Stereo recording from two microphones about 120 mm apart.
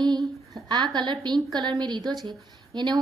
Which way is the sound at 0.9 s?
40° right (ahead or behind).